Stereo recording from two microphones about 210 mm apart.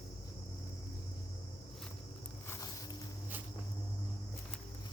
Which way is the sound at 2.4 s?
10° left (ahead or behind).